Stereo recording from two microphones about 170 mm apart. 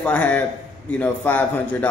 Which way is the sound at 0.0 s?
5° left (ahead or behind).